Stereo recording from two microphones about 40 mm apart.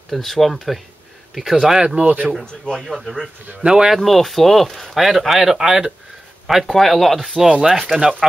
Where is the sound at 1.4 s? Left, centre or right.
Centre.